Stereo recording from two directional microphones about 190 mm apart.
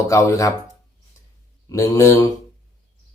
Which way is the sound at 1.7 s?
15° left (ahead or behind).